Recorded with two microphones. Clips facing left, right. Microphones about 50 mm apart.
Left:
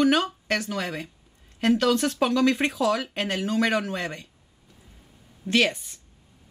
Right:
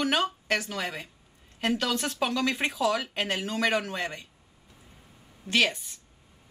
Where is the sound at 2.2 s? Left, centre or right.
Centre.